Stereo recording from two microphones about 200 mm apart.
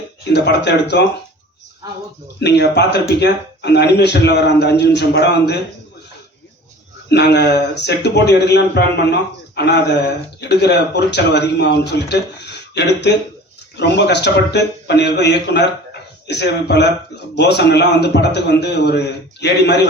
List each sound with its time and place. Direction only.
0.3 s speech: 55° left (ahead or behind)
2.4 s speech: 55° left (ahead or behind)
7.1 s a man's voice: 55° left (ahead or behind)